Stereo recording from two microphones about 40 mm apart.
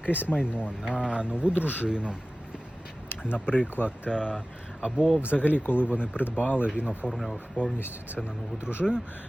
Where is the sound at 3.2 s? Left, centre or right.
Left.